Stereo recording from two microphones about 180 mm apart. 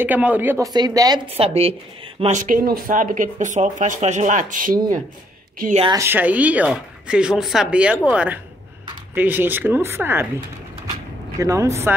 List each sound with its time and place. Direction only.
0.0 s speech: 10° right (ahead or behind)
0.7 s speech: 20° right (ahead or behind)
1.3 s speech: 35° right (ahead or behind)
5.9 s speech: 10° right (ahead or behind)
11.3 s speech: 15° right (ahead or behind)